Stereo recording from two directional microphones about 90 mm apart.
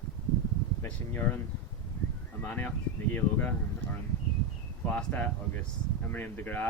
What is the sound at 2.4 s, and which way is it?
Speech, 20° left (ahead or behind).